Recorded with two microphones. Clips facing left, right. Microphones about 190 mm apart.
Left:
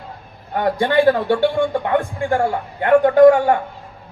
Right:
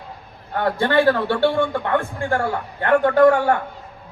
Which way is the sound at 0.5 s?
15° left (ahead or behind).